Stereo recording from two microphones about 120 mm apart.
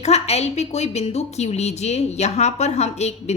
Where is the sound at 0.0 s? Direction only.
60° left (ahead or behind).